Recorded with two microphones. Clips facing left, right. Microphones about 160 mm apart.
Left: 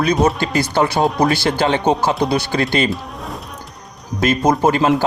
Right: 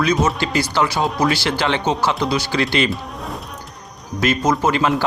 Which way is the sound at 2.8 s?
Centre (ahead or behind).